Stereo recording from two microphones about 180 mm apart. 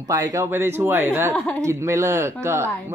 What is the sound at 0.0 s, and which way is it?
Speech, 20° right (ahead or behind).